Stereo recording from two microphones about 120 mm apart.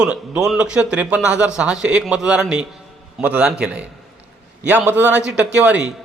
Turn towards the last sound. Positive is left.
turn(degrees=-10)  # may be behind; listen again after turning